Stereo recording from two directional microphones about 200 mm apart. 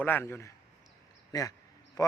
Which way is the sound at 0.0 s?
10° left (ahead or behind).